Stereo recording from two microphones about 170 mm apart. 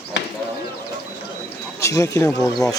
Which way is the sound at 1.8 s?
20° left (ahead or behind).